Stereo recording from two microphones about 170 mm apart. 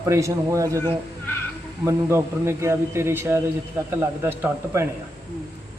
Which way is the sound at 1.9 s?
15° right (ahead or behind).